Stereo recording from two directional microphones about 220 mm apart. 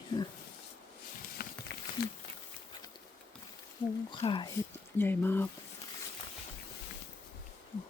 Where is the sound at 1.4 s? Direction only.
45° left (ahead or behind).